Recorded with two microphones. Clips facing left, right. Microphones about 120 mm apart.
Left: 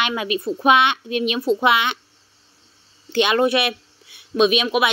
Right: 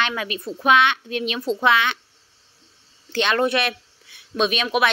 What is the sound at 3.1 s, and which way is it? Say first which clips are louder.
Speech: left 3 dB; 15° left (ahead or behind).